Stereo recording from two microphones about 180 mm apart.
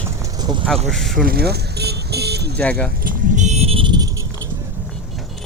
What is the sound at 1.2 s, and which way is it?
Vehicle, 60° right (ahead or behind).